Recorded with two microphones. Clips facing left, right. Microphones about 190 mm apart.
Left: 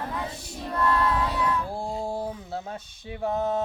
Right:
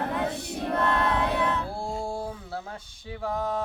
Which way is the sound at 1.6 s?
20° left (ahead or behind).